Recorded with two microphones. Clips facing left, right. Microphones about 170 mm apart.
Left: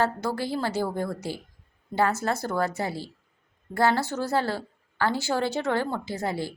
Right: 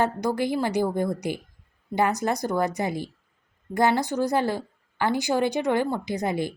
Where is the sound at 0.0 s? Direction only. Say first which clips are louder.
Right 2 dB; 15° right (ahead or behind).